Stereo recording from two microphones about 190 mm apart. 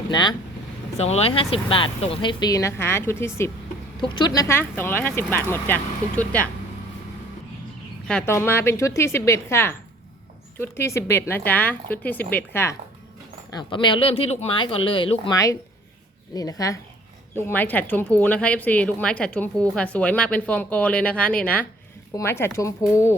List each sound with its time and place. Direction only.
0.1 s speech: 25° left (ahead or behind)
0.9 s speech: 35° left (ahead or behind); by 3.5 s 15° left (ahead or behind)
4.0 s a woman's voice: 25° left (ahead or behind); by 6.5 s 5° left (ahead or behind)
8.0 s a woman's voice: 10° left (ahead or behind)
13.5 s a woman's voice: 25° left (ahead or behind)